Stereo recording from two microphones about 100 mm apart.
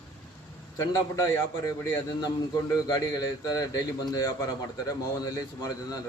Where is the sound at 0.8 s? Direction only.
35° left (ahead or behind).